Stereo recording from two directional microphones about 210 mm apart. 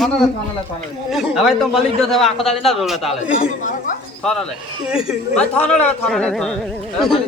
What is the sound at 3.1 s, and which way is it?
Speech, 35° left (ahead or behind).